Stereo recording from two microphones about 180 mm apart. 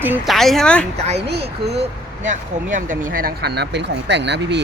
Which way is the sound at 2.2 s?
45° right (ahead or behind).